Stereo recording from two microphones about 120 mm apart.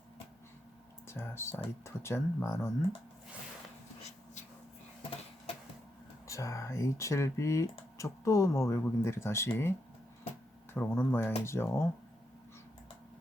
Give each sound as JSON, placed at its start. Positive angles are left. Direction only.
{"t": 1.0, "sound": "speech", "side_deg": 20}
{"t": 6.2, "sound": "speech", "side_deg": 25}
{"t": 10.8, "sound": "speech", "side_deg": 20}